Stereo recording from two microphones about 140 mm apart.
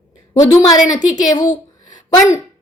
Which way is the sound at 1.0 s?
30° left (ahead or behind).